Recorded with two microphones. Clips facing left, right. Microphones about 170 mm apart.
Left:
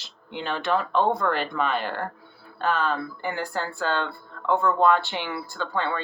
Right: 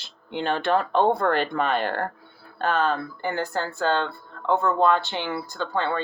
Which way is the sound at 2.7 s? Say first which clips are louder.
Right 2 dB; 30° right (ahead or behind).